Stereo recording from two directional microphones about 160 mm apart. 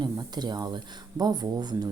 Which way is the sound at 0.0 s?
25° right (ahead or behind).